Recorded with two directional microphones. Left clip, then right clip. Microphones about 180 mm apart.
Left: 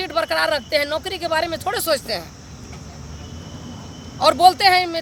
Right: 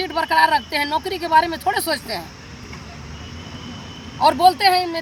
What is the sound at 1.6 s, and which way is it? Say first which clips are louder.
Speech: even; 30° left (ahead or behind).